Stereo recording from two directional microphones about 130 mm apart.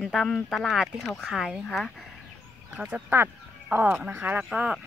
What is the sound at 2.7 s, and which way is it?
Speech, 15° right (ahead or behind).